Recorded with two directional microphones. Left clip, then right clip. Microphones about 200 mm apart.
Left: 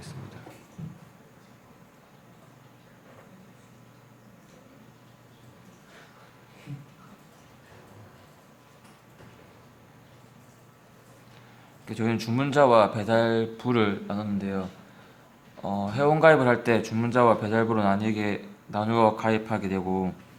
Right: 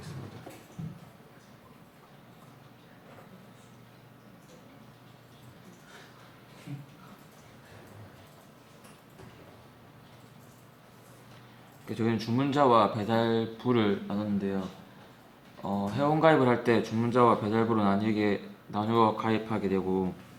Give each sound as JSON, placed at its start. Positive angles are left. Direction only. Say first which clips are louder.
{"t": 11.9, "sound": "speech", "louder": "left 2 dB", "side_deg": 50}
{"t": 15.8, "sound": "speech", "louder": "left 5 dB", "side_deg": 55}